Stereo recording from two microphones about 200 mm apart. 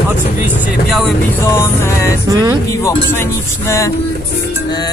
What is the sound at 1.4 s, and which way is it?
Speech, 15° left (ahead or behind).